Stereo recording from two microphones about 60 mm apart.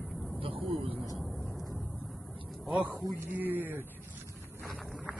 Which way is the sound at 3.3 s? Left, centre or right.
Right.